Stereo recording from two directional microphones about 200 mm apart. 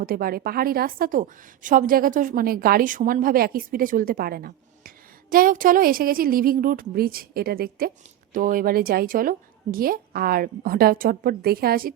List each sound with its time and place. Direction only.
0.0 s a woman's voice: 45° right (ahead or behind)